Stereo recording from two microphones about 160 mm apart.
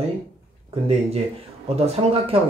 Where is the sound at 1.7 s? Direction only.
40° right (ahead or behind).